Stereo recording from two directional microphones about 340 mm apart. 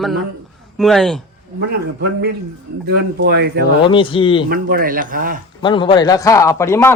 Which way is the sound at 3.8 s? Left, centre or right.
Centre.